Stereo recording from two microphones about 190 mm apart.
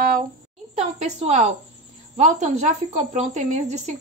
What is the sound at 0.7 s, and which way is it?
Speech, 35° right (ahead or behind).